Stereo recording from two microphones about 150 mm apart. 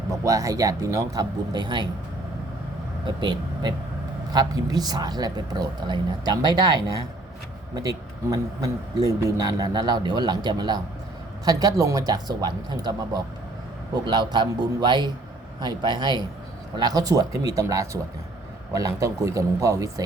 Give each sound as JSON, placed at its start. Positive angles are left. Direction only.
{"t": 0.1, "sound": "a man's voice", "side_deg": -20}
{"t": 3.2, "sound": "a man's voice", "side_deg": -30}